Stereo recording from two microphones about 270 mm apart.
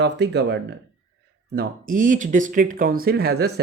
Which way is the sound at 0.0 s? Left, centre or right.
Right.